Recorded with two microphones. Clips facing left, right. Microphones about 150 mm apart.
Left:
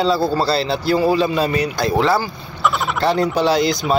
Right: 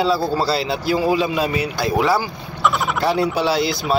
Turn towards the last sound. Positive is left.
turn(degrees=-5)  # may be behind; listen again after turning